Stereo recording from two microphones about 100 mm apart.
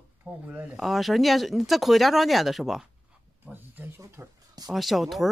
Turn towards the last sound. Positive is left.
turn(degrees=0)  # may be behind; listen again after turning